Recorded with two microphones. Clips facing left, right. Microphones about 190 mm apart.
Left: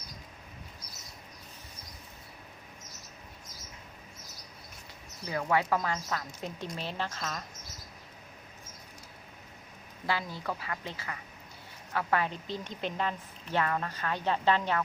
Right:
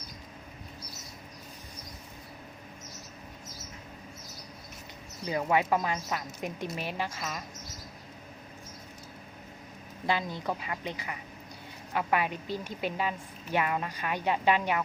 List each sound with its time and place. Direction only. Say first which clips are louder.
5.2 s a woman's voice: right 2 dB; 20° right (ahead or behind)
10.1 s a woman's voice: right 3 dB; 20° right (ahead or behind)